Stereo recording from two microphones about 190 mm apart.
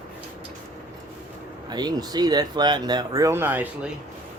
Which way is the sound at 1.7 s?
20° right (ahead or behind).